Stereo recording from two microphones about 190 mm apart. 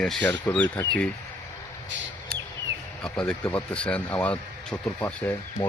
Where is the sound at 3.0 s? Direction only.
5° left (ahead or behind).